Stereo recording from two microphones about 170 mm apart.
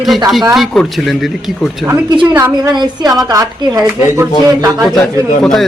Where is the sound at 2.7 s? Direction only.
25° right (ahead or behind).